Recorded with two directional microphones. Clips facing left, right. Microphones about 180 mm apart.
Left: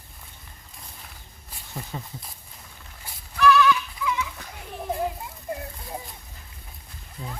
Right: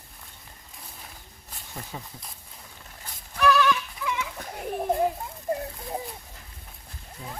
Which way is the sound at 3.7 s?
50° right (ahead or behind).